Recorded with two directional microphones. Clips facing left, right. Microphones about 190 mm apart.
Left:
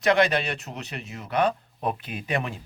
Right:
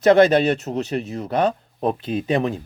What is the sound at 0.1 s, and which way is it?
Speech, 30° right (ahead or behind).